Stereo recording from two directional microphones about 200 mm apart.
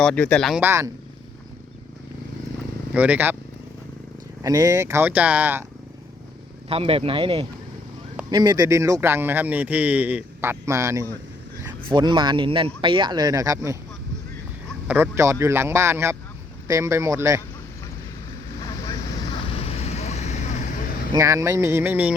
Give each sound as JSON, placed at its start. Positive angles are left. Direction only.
{"t": 0.0, "sound": "speech", "side_deg": 5}
{"t": 0.6, "sound": "a man's voice", "side_deg": -15}
{"t": 2.9, "sound": "a man's voice", "side_deg": -10}
{"t": 4.4, "sound": "a man's voice", "side_deg": -15}
{"t": 6.7, "sound": "a man's voice", "side_deg": -30}
{"t": 14.8, "sound": "a man's voice", "side_deg": -10}
{"t": 19.5, "sound": "vehicle", "side_deg": 30}
{"t": 21.1, "sound": "a man's voice", "side_deg": -15}